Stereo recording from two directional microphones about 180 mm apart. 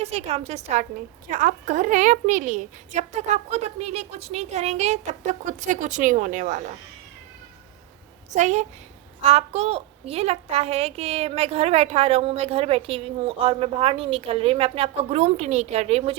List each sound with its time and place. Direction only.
0.0 s a child's voice: 35° right (ahead or behind)
1.3 s a woman's voice: 50° right (ahead or behind)
8.4 s a child's voice: 40° right (ahead or behind)